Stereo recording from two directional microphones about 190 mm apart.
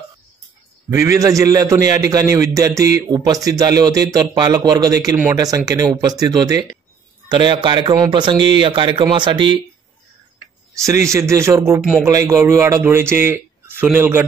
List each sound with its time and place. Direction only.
0.8 s a man's voice: 15° right (ahead or behind)
11.1 s a man's voice: 15° right (ahead or behind)